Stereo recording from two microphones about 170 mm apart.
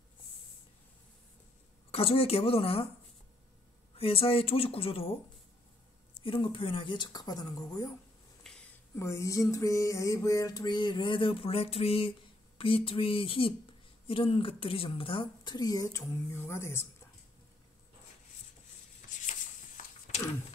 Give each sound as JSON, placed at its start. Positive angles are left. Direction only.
{"t": 1.9, "sound": "speech", "side_deg": 35}
{"t": 3.9, "sound": "speech", "side_deg": 35}
{"t": 6.2, "sound": "speech", "side_deg": 30}
{"t": 8.5, "sound": "a sound", "side_deg": 0}
{"t": 8.9, "sound": "speech", "side_deg": 15}
{"t": 18.9, "sound": "a sound", "side_deg": 50}